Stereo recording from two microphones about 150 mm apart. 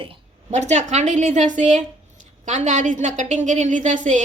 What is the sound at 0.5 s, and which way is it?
A woman's voice, 50° right (ahead or behind).